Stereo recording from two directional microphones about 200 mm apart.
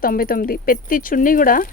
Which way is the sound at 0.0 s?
45° left (ahead or behind).